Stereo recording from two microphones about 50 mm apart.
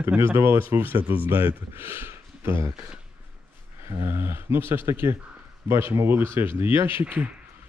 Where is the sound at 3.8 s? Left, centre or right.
Right.